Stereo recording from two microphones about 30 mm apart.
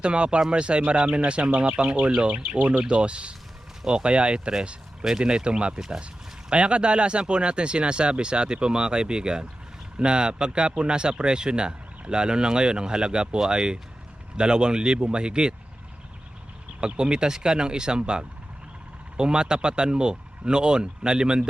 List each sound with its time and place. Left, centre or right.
0.0 s speech: right
16.8 s speech: right